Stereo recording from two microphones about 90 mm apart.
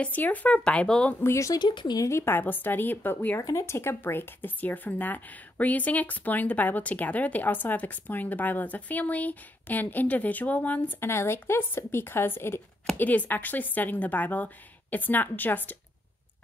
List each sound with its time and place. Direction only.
0.0 s speech: 20° left (ahead or behind)
1.2 s speech: 35° left (ahead or behind)
1.6 s speech: 60° left (ahead or behind)
2.0 s speech: 30° left (ahead or behind)
3.3 s speech: 35° left (ahead or behind); by 11.1 s 15° left (ahead or behind)
11.1 s speech: 30° left (ahead or behind)